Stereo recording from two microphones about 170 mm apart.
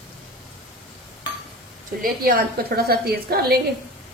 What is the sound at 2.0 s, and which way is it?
A woman's voice, 60° right (ahead or behind).